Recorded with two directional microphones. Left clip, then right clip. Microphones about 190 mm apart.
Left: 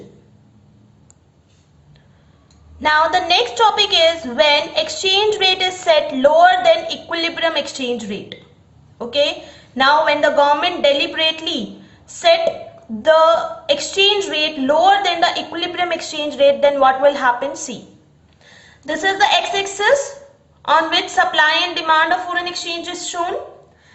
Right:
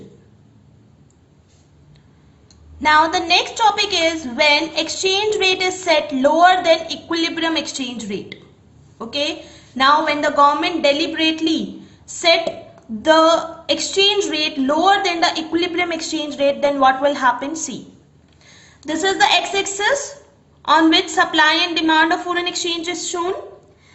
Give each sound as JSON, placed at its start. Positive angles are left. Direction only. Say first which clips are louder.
{"t": 2.8, "sound": "a woman's voice", "louder": "even", "side_deg": -15}